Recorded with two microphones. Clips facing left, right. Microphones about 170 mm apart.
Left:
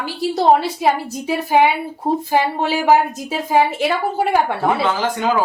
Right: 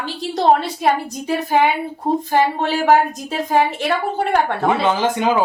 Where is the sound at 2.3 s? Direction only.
10° left (ahead or behind).